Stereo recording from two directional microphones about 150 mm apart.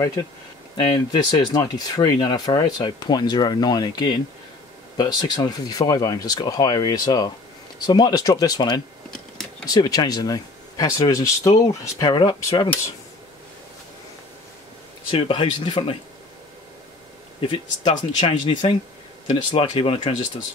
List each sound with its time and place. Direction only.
0.7 s speech: 30° left (ahead or behind)
12.0 s speech: 30° left (ahead or behind)
15.0 s speech: 35° left (ahead or behind)
17.4 s speech: 30° left (ahead or behind)
18.4 s speech: 50° left (ahead or behind)
19.2 s speech: 35° left (ahead or behind)